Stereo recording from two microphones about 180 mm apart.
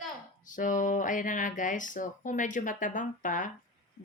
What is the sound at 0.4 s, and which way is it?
A woman's voice, 45° left (ahead or behind).